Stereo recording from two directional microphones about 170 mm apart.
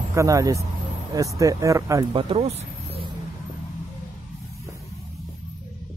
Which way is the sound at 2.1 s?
35° right (ahead or behind).